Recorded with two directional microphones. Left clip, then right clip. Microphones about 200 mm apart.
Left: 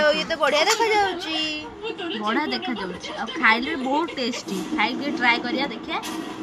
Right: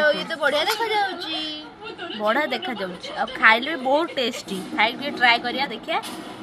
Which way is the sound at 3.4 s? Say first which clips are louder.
Right 3 dB; 60° right (ahead or behind).